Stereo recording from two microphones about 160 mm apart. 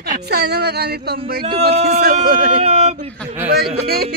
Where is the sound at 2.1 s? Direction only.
60° right (ahead or behind).